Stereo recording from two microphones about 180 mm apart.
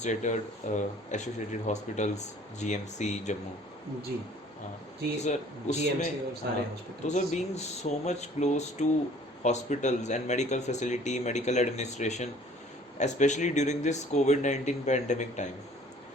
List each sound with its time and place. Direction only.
0.0 s speech: 40° left (ahead or behind)
5.2 s speech: 40° left (ahead or behind)
6.4 s speech: 70° right (ahead or behind)
7.1 s speech: 40° left (ahead or behind)